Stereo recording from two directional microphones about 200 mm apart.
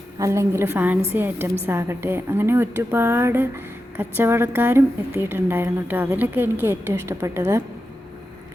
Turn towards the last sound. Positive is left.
turn(degrees=-15)  # may be behind; listen again after turning